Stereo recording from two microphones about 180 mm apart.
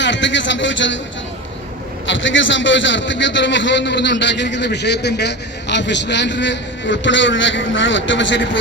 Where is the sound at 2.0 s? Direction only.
90° left.